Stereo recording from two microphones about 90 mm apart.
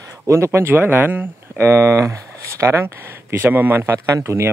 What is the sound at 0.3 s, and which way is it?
Speech, 30° right (ahead or behind).